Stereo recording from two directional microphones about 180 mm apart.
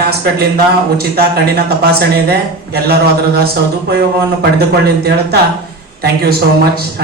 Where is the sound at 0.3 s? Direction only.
60° right (ahead or behind).